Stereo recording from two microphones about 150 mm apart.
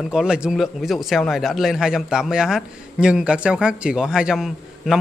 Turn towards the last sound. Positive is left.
turn(degrees=0)  # may be behind; listen again after turning